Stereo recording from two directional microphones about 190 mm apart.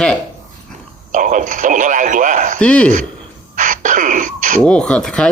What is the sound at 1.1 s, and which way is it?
Speech, 40° right (ahead or behind).